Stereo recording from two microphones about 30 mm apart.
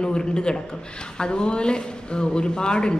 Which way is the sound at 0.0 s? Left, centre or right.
Left.